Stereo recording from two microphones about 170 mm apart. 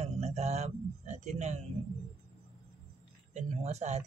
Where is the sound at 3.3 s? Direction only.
40° right (ahead or behind).